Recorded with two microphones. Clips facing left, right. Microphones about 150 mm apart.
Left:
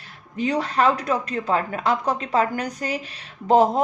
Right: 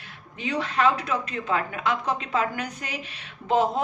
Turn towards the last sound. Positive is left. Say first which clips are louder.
# left 6 dB
turn(degrees=40)  # may be behind; listen again after turning